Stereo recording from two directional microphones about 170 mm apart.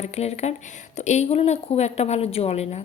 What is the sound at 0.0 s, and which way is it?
Speech, 40° left (ahead or behind).